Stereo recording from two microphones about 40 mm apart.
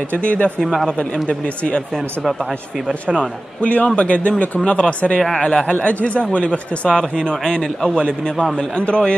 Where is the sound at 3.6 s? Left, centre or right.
Left.